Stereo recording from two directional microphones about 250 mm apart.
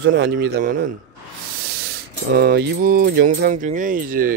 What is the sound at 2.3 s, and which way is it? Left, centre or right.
Speech, right.